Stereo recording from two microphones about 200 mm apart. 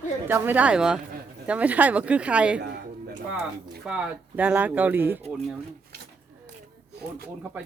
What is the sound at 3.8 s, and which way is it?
Speech, 5° right (ahead or behind).